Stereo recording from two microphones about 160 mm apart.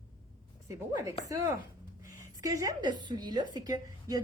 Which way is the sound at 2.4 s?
20° right (ahead or behind).